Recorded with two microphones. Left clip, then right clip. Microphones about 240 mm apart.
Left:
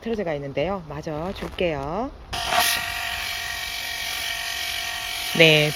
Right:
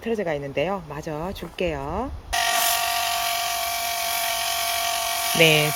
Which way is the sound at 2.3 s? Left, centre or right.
Right.